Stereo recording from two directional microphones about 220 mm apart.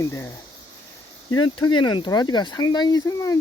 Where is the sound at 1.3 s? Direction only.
75° left (ahead or behind).